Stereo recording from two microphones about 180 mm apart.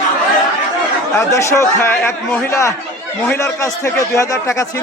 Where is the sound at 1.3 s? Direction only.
15° left (ahead or behind).